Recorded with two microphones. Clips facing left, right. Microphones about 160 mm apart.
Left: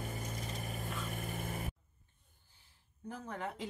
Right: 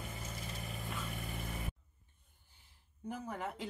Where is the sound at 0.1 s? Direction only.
45° left (ahead or behind).